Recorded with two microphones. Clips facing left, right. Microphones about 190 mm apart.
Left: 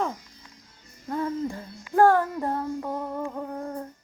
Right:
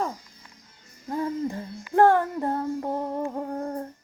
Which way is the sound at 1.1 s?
20° right (ahead or behind).